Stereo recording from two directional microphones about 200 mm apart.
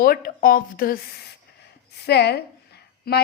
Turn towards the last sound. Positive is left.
turn(degrees=50)  # may be behind; listen again after turning